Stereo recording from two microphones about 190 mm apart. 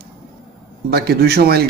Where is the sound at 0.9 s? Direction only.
55° right (ahead or behind).